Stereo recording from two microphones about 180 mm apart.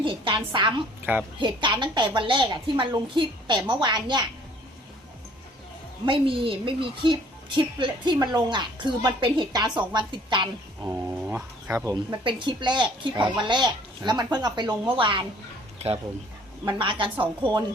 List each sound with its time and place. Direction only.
0.0 s a woman's voice: 30° right (ahead or behind)
6.1 s a woman's voice: 30° right (ahead or behind)
10.8 s a woman's voice: 10° right (ahead or behind); by 15.2 s 25° right (ahead or behind)
16.7 s a woman's voice: 25° right (ahead or behind)